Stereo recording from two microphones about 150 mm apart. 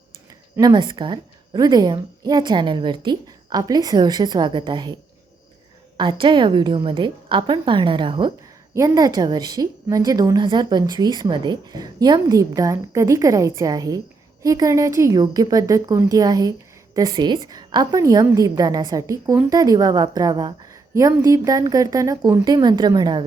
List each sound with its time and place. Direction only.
0.5 s a woman's voice: 30° right (ahead or behind)
6.0 s a woman's voice: 30° right (ahead or behind)
8.7 s a woman's voice: 20° right (ahead or behind)